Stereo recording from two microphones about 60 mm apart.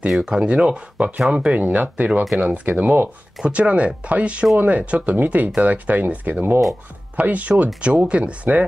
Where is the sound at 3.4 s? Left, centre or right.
Centre.